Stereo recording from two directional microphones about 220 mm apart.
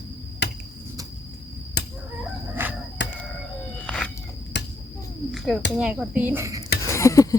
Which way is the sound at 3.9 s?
5° left (ahead or behind).